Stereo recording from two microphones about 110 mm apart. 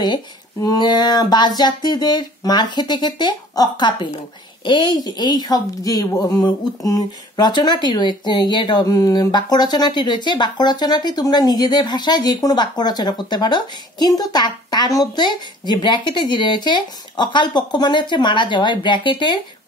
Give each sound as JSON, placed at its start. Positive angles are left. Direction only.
{"t": 0.6, "sound": "speech", "side_deg": 35}